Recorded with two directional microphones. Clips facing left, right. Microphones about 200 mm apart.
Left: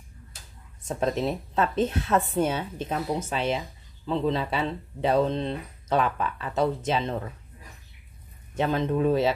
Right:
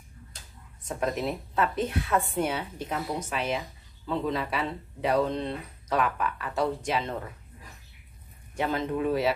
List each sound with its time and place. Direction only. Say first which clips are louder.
0.8 s a woman's voice: left 3 dB; 25° left (ahead or behind)
8.5 s a woman's voice: left 3 dB; 25° left (ahead or behind)